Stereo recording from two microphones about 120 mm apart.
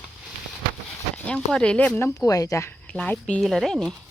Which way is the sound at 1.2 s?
10° left (ahead or behind).